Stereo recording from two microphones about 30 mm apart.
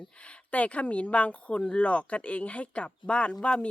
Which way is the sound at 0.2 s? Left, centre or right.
Left.